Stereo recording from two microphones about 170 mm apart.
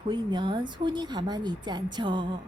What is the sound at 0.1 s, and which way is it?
Speech, 25° right (ahead or behind).